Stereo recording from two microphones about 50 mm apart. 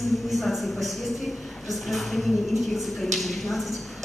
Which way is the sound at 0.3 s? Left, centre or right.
Centre.